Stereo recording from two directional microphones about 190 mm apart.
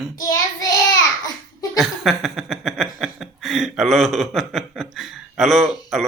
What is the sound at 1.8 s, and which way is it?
Chuckle, centre (ahead or behind).